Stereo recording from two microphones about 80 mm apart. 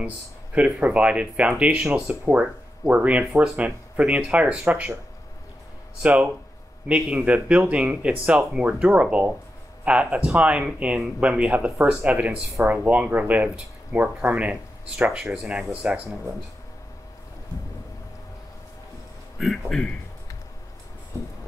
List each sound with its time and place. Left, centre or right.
0.6 s speech: centre
6.0 s speech: centre
19.3 s speech: centre